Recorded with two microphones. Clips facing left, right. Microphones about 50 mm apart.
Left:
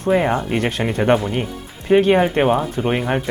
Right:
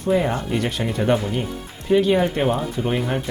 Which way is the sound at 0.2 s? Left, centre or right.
Left.